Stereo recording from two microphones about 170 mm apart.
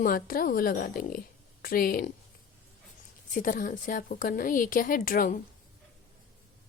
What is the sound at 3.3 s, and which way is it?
A woman's voice, 55° left (ahead or behind).